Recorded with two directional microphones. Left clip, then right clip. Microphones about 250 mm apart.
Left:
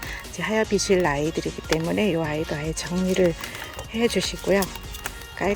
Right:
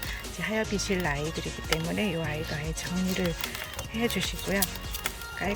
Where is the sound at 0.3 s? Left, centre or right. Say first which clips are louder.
Left 7 dB; left.